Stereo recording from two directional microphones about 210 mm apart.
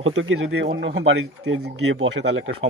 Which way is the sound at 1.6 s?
70° right (ahead or behind).